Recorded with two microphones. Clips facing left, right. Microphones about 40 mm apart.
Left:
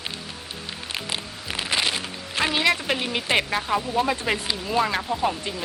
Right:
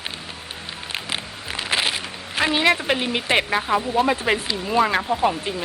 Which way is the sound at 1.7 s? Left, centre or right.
Centre.